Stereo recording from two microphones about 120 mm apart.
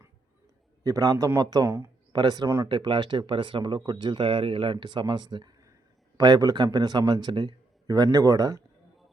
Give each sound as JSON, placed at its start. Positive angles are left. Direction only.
{"t": 0.9, "sound": "a man's voice", "side_deg": -30}
{"t": 2.1, "sound": "speech", "side_deg": -35}
{"t": 2.6, "sound": "speech", "side_deg": -40}